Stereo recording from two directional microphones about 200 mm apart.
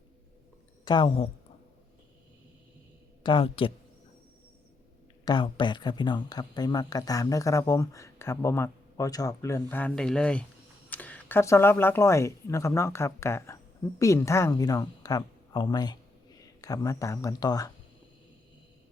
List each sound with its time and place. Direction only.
0.9 s speech: 25° left (ahead or behind)
3.2 s speech: 25° left (ahead or behind)
5.2 s a woman's voice: 25° left (ahead or behind)